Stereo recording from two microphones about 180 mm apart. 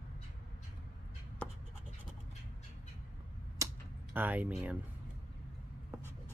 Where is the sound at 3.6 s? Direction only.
15° right (ahead or behind).